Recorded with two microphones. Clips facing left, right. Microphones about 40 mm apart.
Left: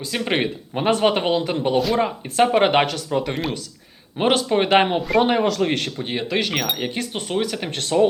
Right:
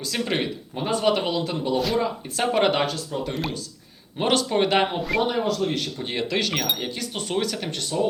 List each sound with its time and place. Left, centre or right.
0.0 s speech: left
0.7 s speech: left
1.1 s speech: left
1.7 s speech: centre
2.0 s speech: left
2.4 s speech: left
2.8 s speech: left
4.2 s speech: left
4.7 s speech: left
5.4 s speech: left
6.0 s speech: centre
6.6 s speech: centre
7.8 s speech: left